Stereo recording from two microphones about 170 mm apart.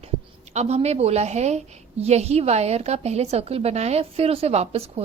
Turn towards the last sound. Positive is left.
turn(degrees=-35)  # may be behind; listen again after turning